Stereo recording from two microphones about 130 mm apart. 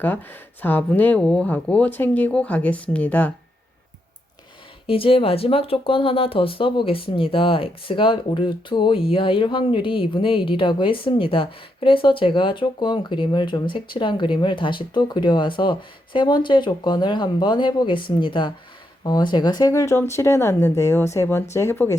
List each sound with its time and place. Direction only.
0.0 s speech: 15° left (ahead or behind)
4.9 s speech: 45° left (ahead or behind); by 21.9 s 20° left (ahead or behind)